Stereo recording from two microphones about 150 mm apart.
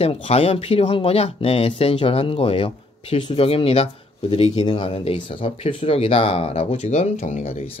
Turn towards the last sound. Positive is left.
turn(degrees=45)  # may be behind; listen again after turning